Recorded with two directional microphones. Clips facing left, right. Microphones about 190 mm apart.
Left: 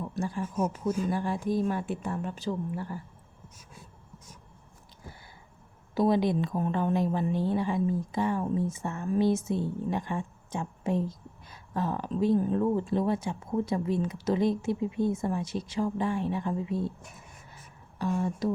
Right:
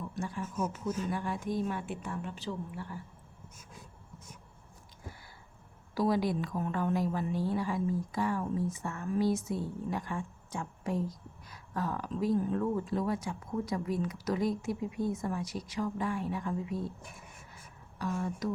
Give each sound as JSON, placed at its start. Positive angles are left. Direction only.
{"t": 0.0, "sound": "a sound", "side_deg": 35}
{"t": 1.1, "sound": "a woman's voice", "side_deg": 35}
{"t": 5.9, "sound": "speech", "side_deg": 20}